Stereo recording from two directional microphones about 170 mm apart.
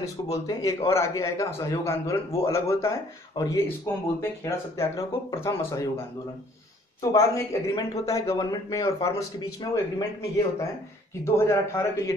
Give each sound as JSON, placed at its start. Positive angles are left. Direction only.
{"t": 0.0, "sound": "a man's voice", "side_deg": 20}